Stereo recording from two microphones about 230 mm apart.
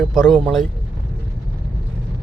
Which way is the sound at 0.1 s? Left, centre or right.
Centre.